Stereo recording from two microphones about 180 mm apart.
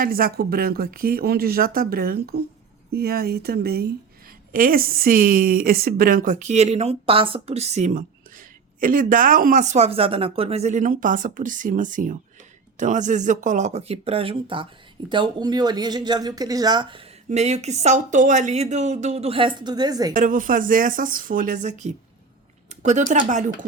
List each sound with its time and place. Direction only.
0.0 s a woman's voice: 55° right (ahead or behind); by 17.1 s 30° right (ahead or behind)
17.2 s speech: 40° right (ahead or behind); by 20.1 s 20° right (ahead or behind)
20.1 s a woman's voice: 45° right (ahead or behind)